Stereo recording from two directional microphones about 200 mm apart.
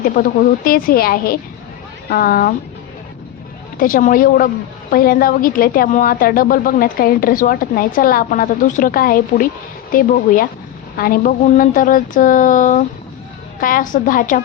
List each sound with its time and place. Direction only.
0.2 s a woman's voice: 45° left (ahead or behind)
3.8 s a woman's voice: 45° left (ahead or behind)